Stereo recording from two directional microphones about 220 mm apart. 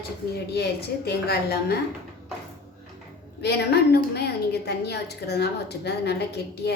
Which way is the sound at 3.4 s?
50° left (ahead or behind).